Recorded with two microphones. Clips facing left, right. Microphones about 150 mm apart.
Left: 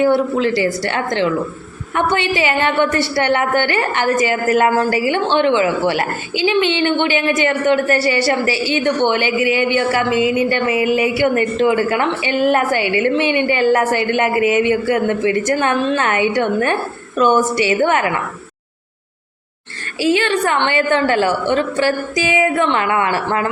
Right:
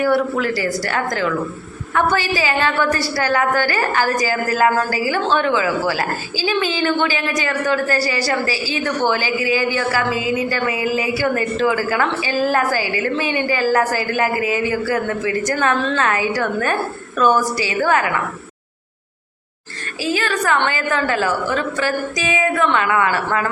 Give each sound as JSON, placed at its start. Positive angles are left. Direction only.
{"t": 0.0, "sound": "a woman's voice", "side_deg": 25}
{"t": 20.0, "sound": "a woman's voice", "side_deg": 25}